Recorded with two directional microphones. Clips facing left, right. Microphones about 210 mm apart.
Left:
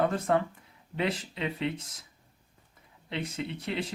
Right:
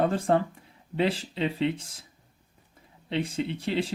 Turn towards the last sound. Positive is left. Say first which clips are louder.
# right 5 dB
turn(degrees=-30)  # may be behind; listen again after turning